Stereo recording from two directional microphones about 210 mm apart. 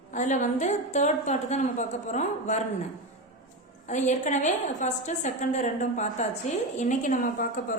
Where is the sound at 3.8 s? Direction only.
35° left (ahead or behind).